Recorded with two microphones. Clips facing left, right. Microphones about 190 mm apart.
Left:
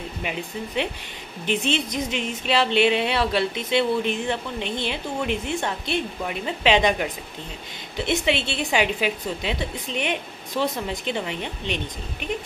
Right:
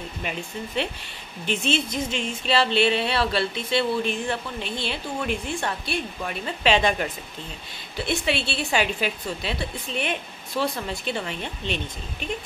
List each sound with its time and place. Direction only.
0.2 s speech: 15° left (ahead or behind)